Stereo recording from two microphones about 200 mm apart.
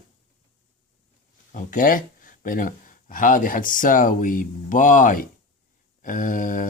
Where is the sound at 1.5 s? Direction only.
40° left (ahead or behind).